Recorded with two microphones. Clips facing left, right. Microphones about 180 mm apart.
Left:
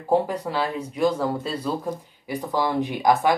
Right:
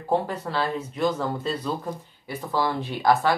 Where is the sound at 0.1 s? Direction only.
10° left (ahead or behind).